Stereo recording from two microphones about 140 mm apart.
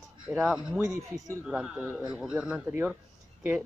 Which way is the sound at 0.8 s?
25° right (ahead or behind).